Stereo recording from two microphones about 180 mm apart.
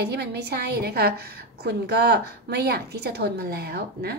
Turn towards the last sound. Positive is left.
turn(degrees=-60)  # may be behind; listen again after turning